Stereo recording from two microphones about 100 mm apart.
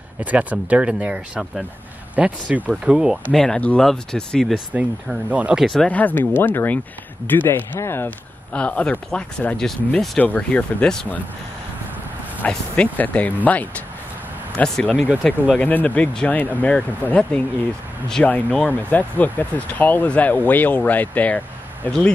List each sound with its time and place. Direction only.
0.2 s speech: 15° right (ahead or behind)
3.3 s speech: 5° left (ahead or behind)
4.7 s speech: 15° right (ahead or behind)
5.6 s speech: centre (ahead or behind)
5.9 s speech: 15° left (ahead or behind)
8.5 s speech: 15° left (ahead or behind)
12.4 s speech: 15° left (ahead or behind)